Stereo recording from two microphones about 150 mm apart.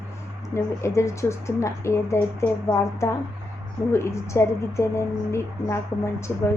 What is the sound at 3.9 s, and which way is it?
A woman's voice, 20° left (ahead or behind).